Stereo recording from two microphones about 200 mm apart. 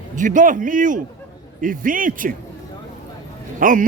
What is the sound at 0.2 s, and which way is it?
A man's voice, 40° right (ahead or behind).